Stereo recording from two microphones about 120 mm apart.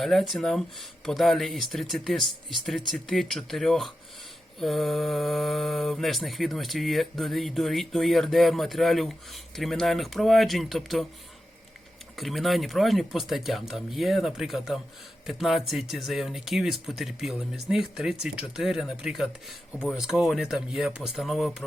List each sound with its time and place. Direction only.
0.0 s speech: centre (ahead or behind)
12.1 s speech: centre (ahead or behind)